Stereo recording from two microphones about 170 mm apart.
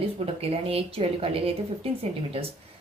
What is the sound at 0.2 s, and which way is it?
A woman's voice, 35° right (ahead or behind).